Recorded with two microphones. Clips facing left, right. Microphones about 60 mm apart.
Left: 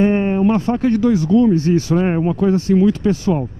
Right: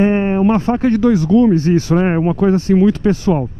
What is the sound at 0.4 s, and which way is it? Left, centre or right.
Speech, right.